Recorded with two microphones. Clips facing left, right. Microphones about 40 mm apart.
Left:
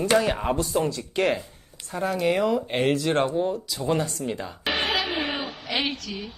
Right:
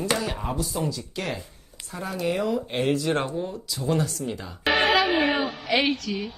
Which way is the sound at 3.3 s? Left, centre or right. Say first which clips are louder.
Left 5 dB; left.